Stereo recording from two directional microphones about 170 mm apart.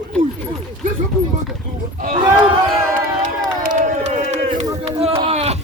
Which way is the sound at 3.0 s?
55° right (ahead or behind).